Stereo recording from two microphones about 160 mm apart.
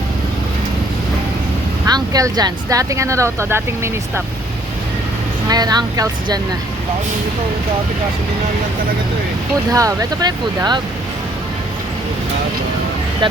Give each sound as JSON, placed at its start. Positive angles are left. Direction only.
{"t": 1.9, "sound": "speech", "side_deg": -25}
{"t": 5.5, "sound": "speech", "side_deg": -25}
{"t": 9.7, "sound": "speech", "side_deg": -20}